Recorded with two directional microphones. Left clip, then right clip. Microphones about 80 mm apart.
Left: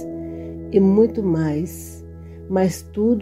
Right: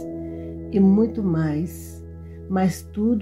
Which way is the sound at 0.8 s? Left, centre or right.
Left.